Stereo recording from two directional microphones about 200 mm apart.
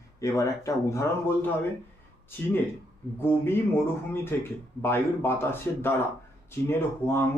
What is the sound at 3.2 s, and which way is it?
Speech, 10° left (ahead or behind).